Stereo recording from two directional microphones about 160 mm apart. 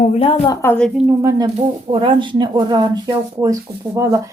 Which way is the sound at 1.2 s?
20° right (ahead or behind).